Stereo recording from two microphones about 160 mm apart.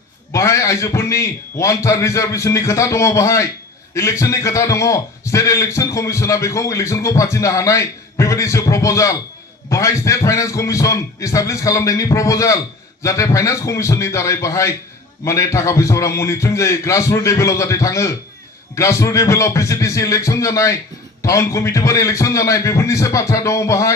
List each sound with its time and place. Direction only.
0.3 s a man's voice: 20° left (ahead or behind)